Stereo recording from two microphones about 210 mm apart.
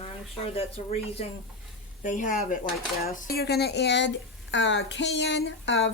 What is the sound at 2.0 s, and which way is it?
Speech, 40° left (ahead or behind).